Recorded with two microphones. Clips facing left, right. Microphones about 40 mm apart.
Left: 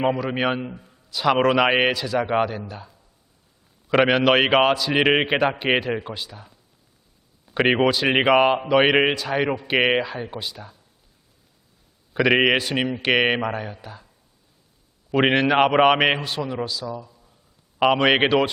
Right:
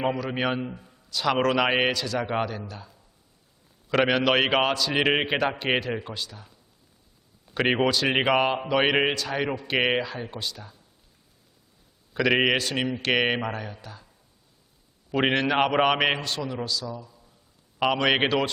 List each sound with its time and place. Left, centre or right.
0.0 s a man's voice: centre
0.8 s a man's voice: centre
12.1 s a man's voice: centre
15.1 s a man's voice: centre